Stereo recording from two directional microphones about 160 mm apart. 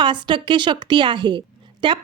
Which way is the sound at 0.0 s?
30° right (ahead or behind).